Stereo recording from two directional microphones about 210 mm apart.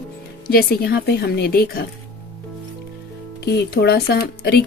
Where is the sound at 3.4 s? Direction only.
50° left (ahead or behind).